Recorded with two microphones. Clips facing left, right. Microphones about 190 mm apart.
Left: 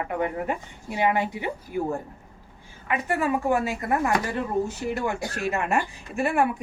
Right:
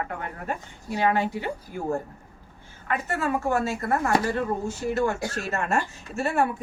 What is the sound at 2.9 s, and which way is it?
Speech, 15° left (ahead or behind).